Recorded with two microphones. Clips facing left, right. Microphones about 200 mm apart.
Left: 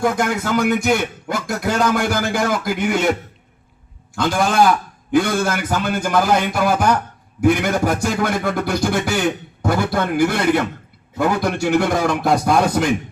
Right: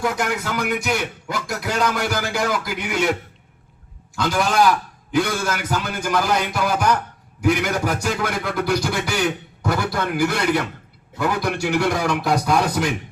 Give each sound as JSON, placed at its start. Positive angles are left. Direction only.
{"t": 0.0, "sound": "speech", "side_deg": 50}
{"t": 4.1, "sound": "speech", "side_deg": 50}